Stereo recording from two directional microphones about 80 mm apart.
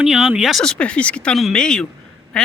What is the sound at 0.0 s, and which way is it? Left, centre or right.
Speech, centre.